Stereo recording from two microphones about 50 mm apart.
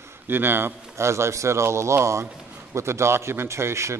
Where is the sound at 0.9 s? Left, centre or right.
Right.